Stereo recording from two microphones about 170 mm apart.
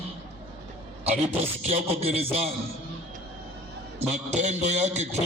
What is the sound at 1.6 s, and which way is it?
Speech, 35° right (ahead or behind).